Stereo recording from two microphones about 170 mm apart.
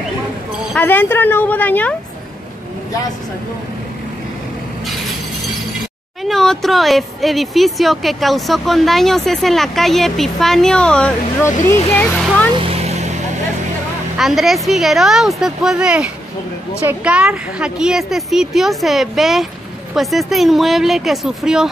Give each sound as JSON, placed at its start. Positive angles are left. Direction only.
{"t": 0.7, "sound": "a woman's voice", "side_deg": 10}
{"t": 6.2, "sound": "a woman's voice", "side_deg": 0}
{"t": 12.5, "sound": "music", "side_deg": -40}
{"t": 14.1, "sound": "speech", "side_deg": 0}